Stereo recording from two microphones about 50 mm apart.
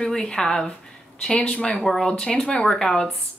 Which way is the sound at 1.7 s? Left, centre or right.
Centre.